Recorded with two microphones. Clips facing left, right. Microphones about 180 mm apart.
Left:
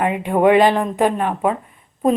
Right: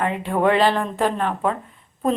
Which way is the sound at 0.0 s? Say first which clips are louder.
Left 4 dB; 15° left (ahead or behind).